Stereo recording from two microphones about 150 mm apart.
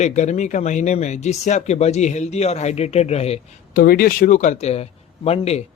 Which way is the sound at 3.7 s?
80° left.